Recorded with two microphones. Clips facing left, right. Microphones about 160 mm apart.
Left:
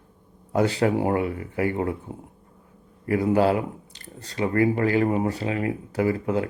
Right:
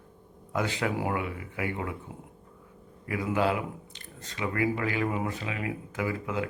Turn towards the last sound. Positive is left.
turn(degrees=35)  # may be behind; listen again after turning